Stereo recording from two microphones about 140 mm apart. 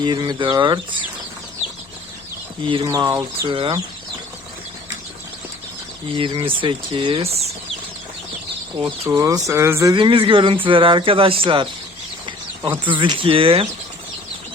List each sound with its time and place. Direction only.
0.0 s speech: 30° right (ahead or behind)
2.6 s speech: 40° right (ahead or behind)
2.9 s speech: 25° right (ahead or behind)
6.1 s speech: 35° right (ahead or behind)
9.0 s speech: 20° right (ahead or behind)
9.9 s speech: 40° right (ahead or behind)
12.8 s speech: 35° right (ahead or behind)